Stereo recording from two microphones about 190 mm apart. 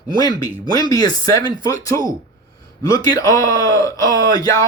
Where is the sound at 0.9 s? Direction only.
20° left (ahead or behind).